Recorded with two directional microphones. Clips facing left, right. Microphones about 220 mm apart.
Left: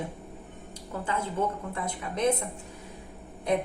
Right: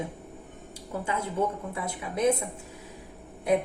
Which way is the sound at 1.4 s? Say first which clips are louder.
Right 1 dB; 10° right (ahead or behind).